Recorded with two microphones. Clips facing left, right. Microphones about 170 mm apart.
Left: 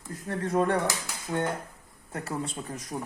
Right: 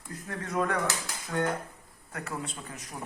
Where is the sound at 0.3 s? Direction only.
30° left (ahead or behind).